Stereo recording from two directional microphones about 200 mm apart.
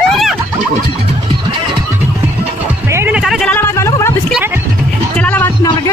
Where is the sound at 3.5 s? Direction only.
15° left (ahead or behind).